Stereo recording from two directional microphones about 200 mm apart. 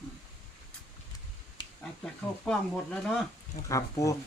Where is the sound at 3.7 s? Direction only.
15° left (ahead or behind).